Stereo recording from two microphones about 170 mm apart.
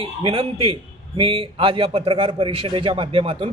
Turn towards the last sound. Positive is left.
turn(degrees=-30)  # may be behind; listen again after turning